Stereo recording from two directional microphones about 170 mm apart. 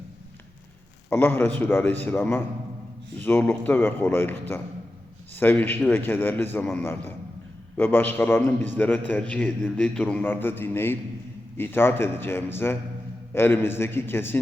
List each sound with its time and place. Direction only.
1.1 s a man's voice: 10° left (ahead or behind)